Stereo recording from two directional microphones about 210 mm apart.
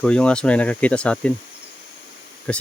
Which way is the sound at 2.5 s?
5° left (ahead or behind).